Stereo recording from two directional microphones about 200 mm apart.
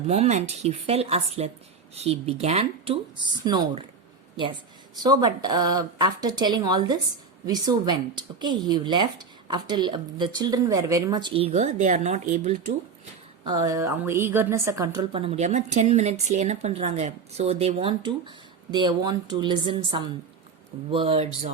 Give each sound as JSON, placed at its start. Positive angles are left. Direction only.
{"t": 0.1, "sound": "speech", "side_deg": -35}
{"t": 5.0, "sound": "speech", "side_deg": -20}
{"t": 13.4, "sound": "a woman's voice", "side_deg": -20}
{"t": 15.2, "sound": "speech", "side_deg": -35}